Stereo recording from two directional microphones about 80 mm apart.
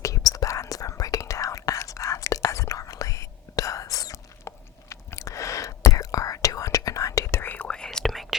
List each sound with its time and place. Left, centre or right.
0.0 s whispering: left
7.4 s whispering: centre
7.9 s whispering: centre